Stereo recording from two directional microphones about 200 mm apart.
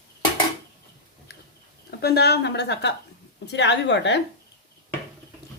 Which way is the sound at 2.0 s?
55° left (ahead or behind).